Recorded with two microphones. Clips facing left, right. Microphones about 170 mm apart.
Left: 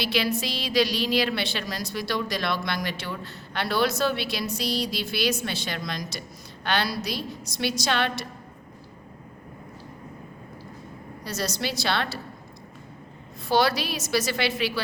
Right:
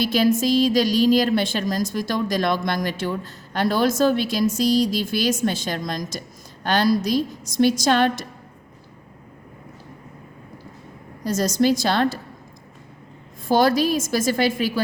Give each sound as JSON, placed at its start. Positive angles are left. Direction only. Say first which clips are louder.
{"t": 0.0, "sound": "a woman's voice", "louder": "right 8 dB", "side_deg": -45}
{"t": 11.2, "sound": "a woman's voice", "louder": "right 10 dB", "side_deg": -45}
{"t": 13.5, "sound": "a woman's voice", "louder": "right 6 dB", "side_deg": -45}